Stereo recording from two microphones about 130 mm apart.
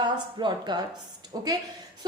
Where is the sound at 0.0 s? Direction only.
35° right (ahead or behind).